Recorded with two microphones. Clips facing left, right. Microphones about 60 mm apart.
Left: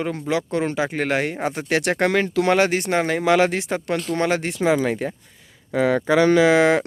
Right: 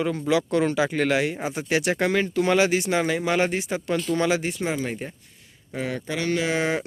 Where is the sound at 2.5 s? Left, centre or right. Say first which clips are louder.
Left 2 dB; left.